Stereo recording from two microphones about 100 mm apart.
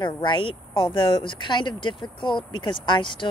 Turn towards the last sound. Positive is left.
turn(degrees=55)  # may be behind; listen again after turning